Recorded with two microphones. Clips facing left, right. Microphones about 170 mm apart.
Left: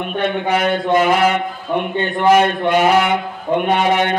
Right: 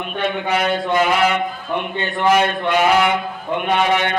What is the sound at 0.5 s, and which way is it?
Speech, 50° left (ahead or behind).